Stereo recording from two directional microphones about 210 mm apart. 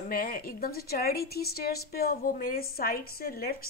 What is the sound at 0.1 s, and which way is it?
A woman's voice, 45° left (ahead or behind).